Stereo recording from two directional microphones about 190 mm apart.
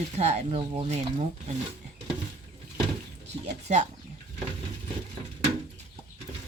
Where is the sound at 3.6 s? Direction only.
40° right (ahead or behind).